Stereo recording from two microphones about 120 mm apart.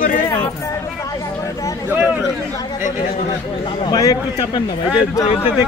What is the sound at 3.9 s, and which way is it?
Speech, 30° left (ahead or behind).